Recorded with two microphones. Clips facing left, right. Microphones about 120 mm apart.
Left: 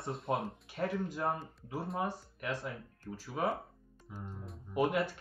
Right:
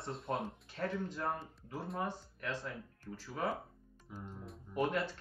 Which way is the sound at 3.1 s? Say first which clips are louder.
Left 4 dB; 40° left (ahead or behind).